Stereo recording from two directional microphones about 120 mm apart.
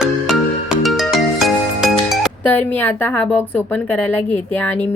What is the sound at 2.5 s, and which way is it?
A woman's voice, 15° left (ahead or behind).